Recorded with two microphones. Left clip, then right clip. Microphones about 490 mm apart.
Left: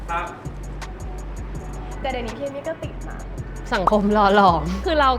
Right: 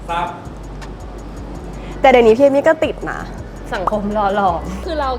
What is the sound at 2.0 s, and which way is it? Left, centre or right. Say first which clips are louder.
Speech: right 18 dB; right.